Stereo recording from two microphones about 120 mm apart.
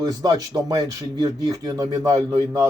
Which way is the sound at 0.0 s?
35° right (ahead or behind).